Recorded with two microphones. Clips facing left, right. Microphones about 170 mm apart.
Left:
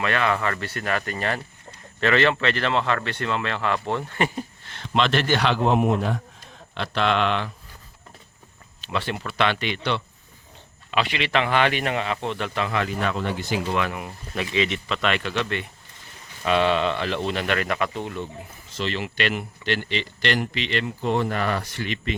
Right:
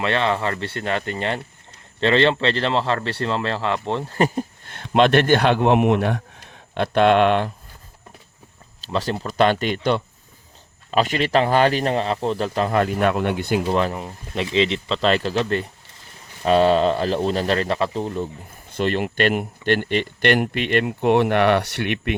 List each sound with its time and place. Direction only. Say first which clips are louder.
0.0 s speech: right 2 dB; 25° right (ahead or behind); by 7.5 s 50° right (ahead or behind)
8.8 s a man's voice: right 4 dB; 40° right (ahead or behind); by 13.6 s 55° right (ahead or behind)
13.7 s a man's voice: right 4 dB; 35° right (ahead or behind)
18.7 s speech: right 7 dB; 50° right (ahead or behind)